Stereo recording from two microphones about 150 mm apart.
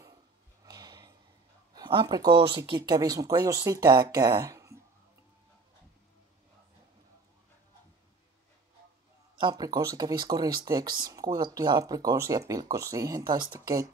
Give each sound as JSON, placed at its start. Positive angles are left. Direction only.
{"t": 0.7, "sound": "a sound", "side_deg": -25}
{"t": 1.7, "sound": "speech", "side_deg": -30}
{"t": 9.4, "sound": "speech", "side_deg": -25}